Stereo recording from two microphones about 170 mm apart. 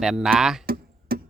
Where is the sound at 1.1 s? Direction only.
65° right (ahead or behind).